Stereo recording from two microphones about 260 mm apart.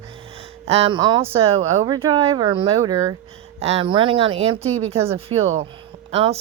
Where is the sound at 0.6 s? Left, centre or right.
Right.